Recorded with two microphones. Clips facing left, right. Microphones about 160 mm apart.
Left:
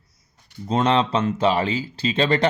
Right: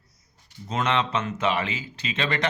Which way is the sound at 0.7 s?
30° left (ahead or behind).